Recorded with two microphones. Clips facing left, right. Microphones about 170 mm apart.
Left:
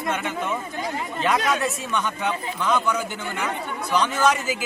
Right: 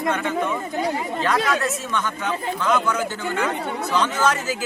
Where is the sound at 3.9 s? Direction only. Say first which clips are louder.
Left 1 dB; 15° left (ahead or behind).